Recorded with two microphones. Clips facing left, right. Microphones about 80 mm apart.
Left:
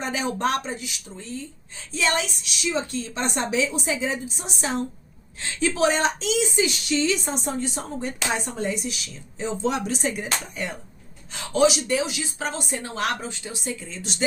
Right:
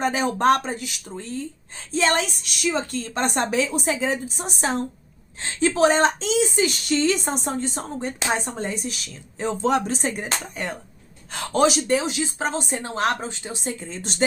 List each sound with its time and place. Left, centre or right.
0.0 s a woman's voice: right